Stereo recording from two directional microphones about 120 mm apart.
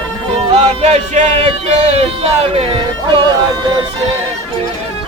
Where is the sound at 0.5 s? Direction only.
65° right (ahead or behind).